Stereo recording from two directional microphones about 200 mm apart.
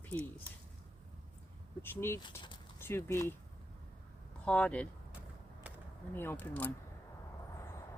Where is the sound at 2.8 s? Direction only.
15° left (ahead or behind).